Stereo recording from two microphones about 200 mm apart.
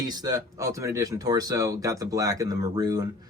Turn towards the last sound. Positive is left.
turn(degrees=-20)  # may be behind; listen again after turning